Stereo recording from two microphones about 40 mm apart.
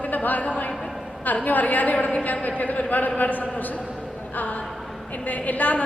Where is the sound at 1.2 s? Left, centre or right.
Left.